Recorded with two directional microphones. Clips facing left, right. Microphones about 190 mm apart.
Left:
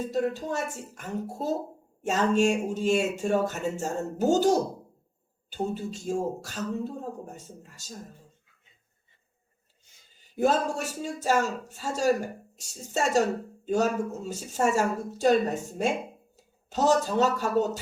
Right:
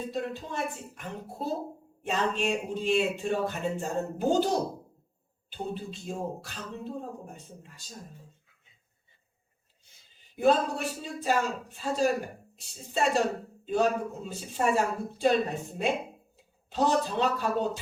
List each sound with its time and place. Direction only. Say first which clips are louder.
0.0 s speech: left 6 dB; 45° left (ahead or behind)
10.3 s speech: even; 45° left (ahead or behind)